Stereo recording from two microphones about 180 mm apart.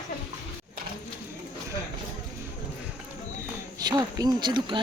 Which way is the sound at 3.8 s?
20° right (ahead or behind).